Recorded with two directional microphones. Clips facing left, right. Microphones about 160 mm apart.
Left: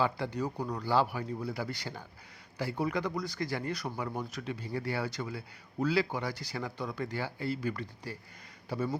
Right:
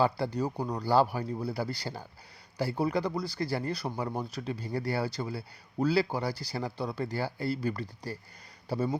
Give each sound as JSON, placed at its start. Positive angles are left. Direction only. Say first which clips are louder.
{"t": 0.0, "sound": "speech", "louder": "right 3 dB", "side_deg": -35}